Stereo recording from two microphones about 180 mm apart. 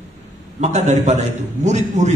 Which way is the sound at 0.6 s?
40° right (ahead or behind).